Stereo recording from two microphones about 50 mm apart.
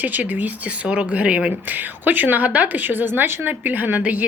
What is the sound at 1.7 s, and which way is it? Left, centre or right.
Speech, right.